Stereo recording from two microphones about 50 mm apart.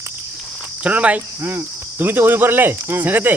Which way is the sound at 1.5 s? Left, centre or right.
Right.